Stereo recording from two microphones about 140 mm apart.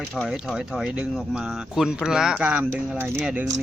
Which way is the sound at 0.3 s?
Centre (ahead or behind).